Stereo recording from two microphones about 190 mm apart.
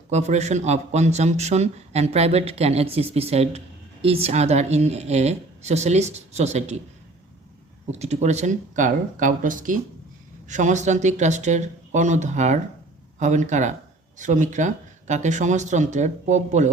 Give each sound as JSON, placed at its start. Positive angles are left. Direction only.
{"t": 0.1, "sound": "a man's voice", "side_deg": -35}
{"t": 7.9, "sound": "a man's voice", "side_deg": -35}